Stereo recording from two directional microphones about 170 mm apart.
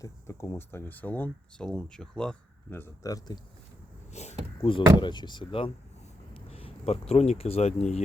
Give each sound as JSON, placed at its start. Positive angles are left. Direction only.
{"t": 0.0, "sound": "speech", "side_deg": 15}
{"t": 4.1, "sound": "a sound", "side_deg": 40}
{"t": 4.5, "sound": "speech", "side_deg": 35}